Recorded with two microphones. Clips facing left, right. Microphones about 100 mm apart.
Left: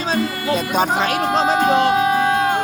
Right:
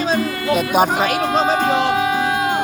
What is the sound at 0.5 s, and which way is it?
Speech, 10° right (ahead or behind).